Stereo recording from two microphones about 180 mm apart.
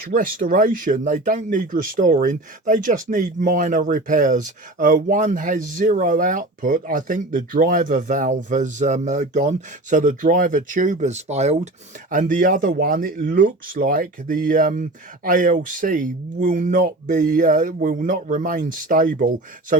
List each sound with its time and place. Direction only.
0.1 s speech: 50° right (ahead or behind)